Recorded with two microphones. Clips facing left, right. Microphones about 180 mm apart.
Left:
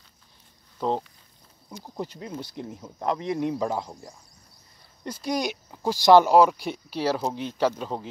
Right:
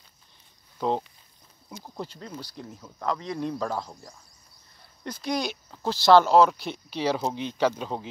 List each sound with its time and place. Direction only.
2.0 s speech: 15° left (ahead or behind)